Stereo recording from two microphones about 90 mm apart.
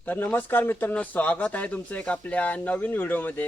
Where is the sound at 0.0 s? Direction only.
20° left (ahead or behind).